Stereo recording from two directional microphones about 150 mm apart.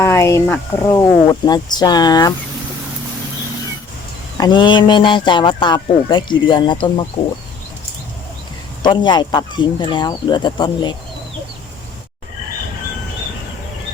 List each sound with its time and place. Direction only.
0.0 s speech: 20° left (ahead or behind)
4.4 s speech: 30° left (ahead or behind)
8.8 s speech: 30° left (ahead or behind)